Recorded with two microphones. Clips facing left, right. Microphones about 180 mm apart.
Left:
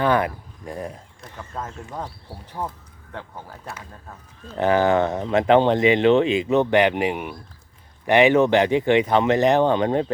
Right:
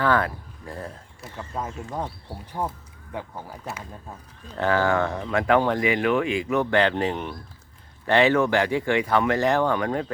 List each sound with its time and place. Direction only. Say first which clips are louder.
0.0 s speech: left 2 dB; 20° left (ahead or behind)
1.4 s speech: right 1 dB; 10° right (ahead or behind)
4.5 s speech: left 4 dB; 20° left (ahead or behind)